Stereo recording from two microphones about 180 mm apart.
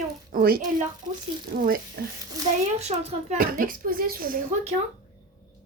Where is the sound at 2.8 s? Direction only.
35° right (ahead or behind).